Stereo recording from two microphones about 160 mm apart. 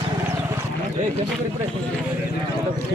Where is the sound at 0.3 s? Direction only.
20° right (ahead or behind).